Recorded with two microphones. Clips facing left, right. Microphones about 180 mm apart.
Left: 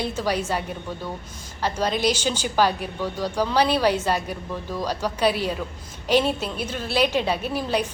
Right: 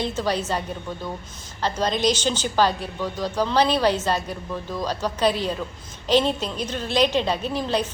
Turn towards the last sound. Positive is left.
turn(degrees=10)  # may be behind; listen again after turning